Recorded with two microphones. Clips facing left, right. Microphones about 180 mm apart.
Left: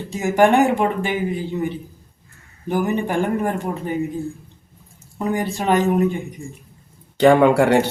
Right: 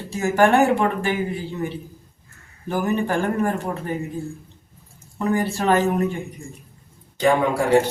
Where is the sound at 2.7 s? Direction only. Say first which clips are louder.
Left 1 dB; 15° left (ahead or behind).